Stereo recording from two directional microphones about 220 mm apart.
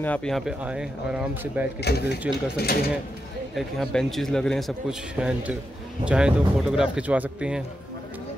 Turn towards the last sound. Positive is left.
turn(degrees=-5)  # may be behind; listen again after turning